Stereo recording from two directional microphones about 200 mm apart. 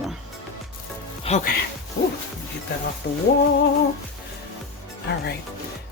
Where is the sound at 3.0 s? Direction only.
50° left (ahead or behind).